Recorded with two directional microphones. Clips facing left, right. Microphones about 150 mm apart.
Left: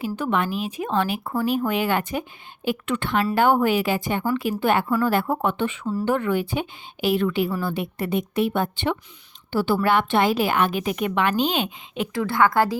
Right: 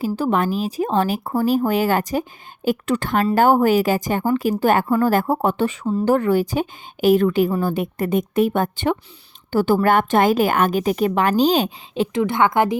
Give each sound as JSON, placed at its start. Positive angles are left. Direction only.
{"t": 0.0, "sound": "speech", "side_deg": -40}
{"t": 5.8, "sound": "a woman's voice", "side_deg": -25}
{"t": 6.1, "sound": "a woman's voice", "side_deg": -40}
{"t": 12.1, "sound": "a woman's voice", "side_deg": -20}